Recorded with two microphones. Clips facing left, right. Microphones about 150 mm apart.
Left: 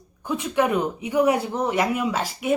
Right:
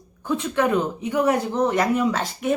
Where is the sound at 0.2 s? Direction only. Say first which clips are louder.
Even; 15° left (ahead or behind).